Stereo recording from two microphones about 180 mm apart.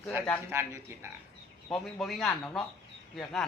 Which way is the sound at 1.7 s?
Centre (ahead or behind).